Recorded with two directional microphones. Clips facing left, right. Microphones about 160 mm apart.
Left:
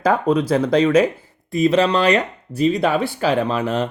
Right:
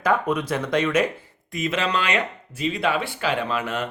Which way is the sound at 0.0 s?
35° left (ahead or behind).